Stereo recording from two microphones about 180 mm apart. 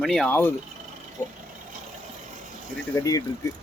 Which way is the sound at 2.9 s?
20° left (ahead or behind).